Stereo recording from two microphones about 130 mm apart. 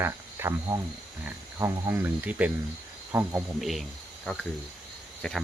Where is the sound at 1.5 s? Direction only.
20° right (ahead or behind).